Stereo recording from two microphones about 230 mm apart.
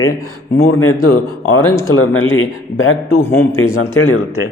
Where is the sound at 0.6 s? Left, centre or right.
Left.